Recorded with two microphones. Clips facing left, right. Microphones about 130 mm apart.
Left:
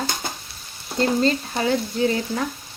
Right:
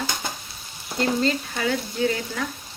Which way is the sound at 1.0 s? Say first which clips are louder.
Left 3 dB; 35° left (ahead or behind).